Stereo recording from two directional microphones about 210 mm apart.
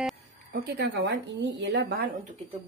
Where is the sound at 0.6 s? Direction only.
55° right (ahead or behind).